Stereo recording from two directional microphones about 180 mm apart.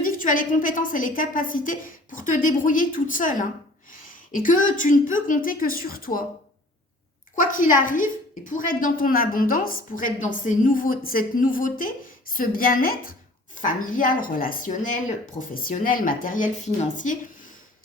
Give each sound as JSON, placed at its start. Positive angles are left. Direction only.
{"t": 0.0, "sound": "a woman's voice", "side_deg": 45}
{"t": 7.3, "sound": "a woman's voice", "side_deg": 50}